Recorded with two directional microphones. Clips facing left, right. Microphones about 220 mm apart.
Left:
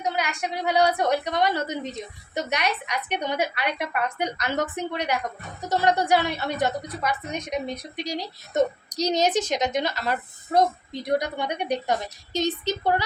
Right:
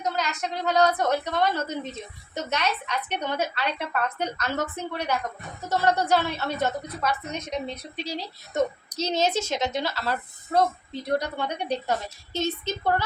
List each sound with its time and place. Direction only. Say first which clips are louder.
0.0 s a woman's voice: left 1 dB; 10° left (ahead or behind)